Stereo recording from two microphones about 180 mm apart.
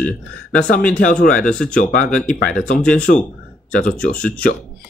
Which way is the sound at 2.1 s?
5° left (ahead or behind).